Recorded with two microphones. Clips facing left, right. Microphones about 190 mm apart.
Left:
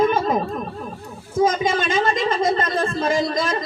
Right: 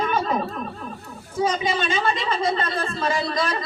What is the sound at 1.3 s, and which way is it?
A man's voice, 45° left (ahead or behind).